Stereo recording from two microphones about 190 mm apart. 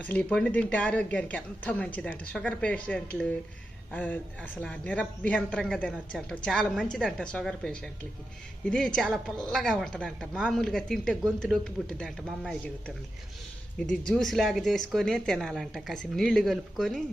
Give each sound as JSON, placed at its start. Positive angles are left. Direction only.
{"t": 0.0, "sound": "speech", "side_deg": 5}
{"t": 13.9, "sound": "speech", "side_deg": 5}